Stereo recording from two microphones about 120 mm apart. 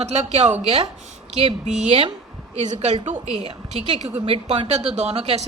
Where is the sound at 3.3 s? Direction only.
55° right (ahead or behind).